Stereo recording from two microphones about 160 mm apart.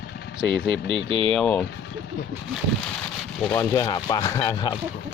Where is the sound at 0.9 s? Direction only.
35° right (ahead or behind).